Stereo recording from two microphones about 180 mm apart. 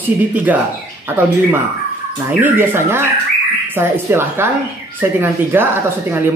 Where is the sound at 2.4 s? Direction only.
10° right (ahead or behind).